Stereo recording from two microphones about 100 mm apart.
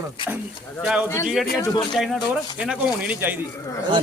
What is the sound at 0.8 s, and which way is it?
Speech, 10° right (ahead or behind).